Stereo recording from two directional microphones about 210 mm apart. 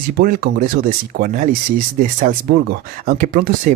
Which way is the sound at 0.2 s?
45° right (ahead or behind).